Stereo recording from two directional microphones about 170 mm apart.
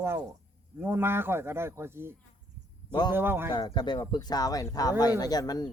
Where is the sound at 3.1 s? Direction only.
15° right (ahead or behind).